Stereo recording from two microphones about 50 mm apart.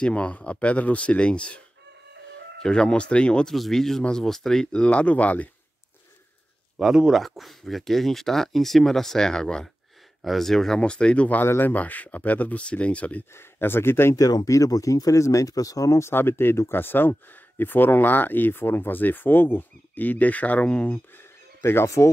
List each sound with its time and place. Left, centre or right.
0.0 s speech: left
2.6 s speech: centre
3.4 s speech: centre
4.7 s speech: left
6.8 s speech: centre
10.2 s speech: centre
10.8 s speech: left
11.4 s speech: left
11.7 s speech: left
13.3 s speech: left
14.5 s speech: left
16.1 s speech: left
21.2 s a sound: left
21.8 s speech: left